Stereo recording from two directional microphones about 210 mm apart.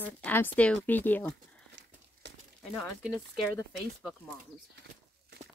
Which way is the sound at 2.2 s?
60° right (ahead or behind).